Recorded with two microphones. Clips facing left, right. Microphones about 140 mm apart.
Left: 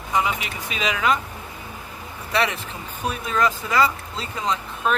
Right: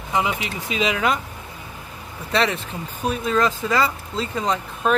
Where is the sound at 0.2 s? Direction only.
25° right (ahead or behind).